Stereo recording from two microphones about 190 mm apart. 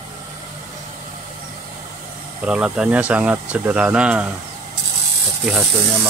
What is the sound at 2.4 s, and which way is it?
Speech, 5° right (ahead or behind).